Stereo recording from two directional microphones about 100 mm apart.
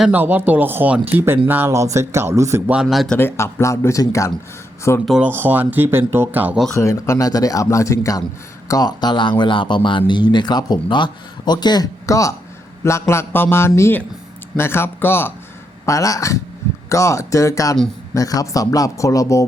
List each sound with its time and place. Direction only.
0.1 s speech: 15° right (ahead or behind)
1.7 s speech: 30° right (ahead or behind)
2.8 s speech: centre (ahead or behind)
3.2 s a man's voice: 25° left (ahead or behind)
5.2 s speech: 20° right (ahead or behind)
6.7 s speech: 30° left (ahead or behind)
8.9 s speech: 45° left (ahead or behind)
12.0 s a man's voice: 30° left (ahead or behind)
15.9 s speech: 35° left (ahead or behind)